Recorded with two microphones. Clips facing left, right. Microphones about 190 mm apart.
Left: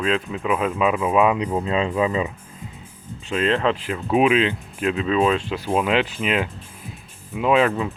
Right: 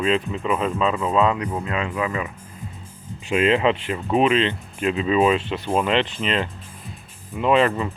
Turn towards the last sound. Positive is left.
turn(degrees=0)  # may be behind; listen again after turning